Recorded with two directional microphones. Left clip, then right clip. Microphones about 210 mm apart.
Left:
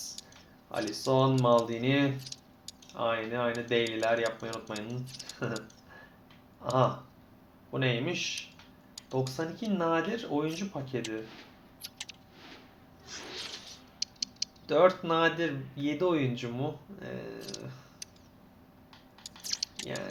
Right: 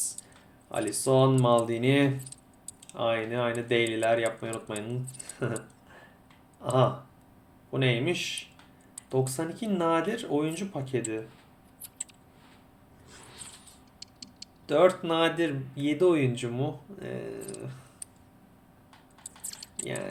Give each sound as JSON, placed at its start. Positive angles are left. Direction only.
{"t": 0.7, "sound": "speech", "side_deg": -15}
{"t": 11.2, "sound": "a sound", "side_deg": 5}
{"t": 14.7, "sound": "speech", "side_deg": -15}
{"t": 19.5, "sound": "drip", "side_deg": 0}
{"t": 19.8, "sound": "speech", "side_deg": -15}